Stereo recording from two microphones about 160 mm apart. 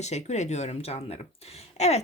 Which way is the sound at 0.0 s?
45° left (ahead or behind).